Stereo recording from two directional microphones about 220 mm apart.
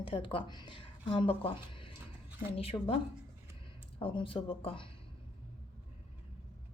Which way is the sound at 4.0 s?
25° left (ahead or behind).